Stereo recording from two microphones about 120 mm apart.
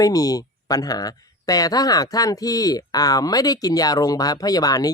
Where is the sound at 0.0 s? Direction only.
30° left (ahead or behind).